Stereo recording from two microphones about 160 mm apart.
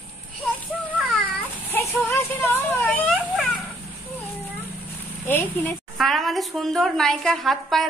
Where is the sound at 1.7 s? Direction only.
15° left (ahead or behind).